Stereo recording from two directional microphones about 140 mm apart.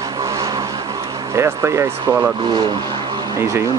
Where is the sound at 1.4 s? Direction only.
20° right (ahead or behind).